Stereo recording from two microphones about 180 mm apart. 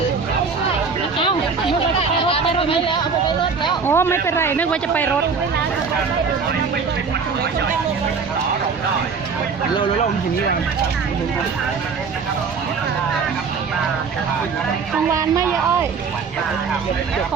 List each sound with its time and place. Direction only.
2.0 s a sound: 30° left (ahead or behind)
3.8 s speech: 15° left (ahead or behind)
15.1 s speech: 15° right (ahead or behind)